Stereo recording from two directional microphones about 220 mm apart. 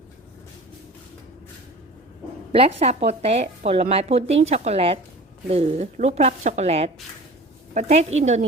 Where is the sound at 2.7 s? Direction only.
30° right (ahead or behind).